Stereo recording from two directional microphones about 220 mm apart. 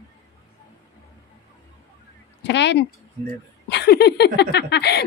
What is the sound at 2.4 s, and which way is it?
Speech, 50° left (ahead or behind).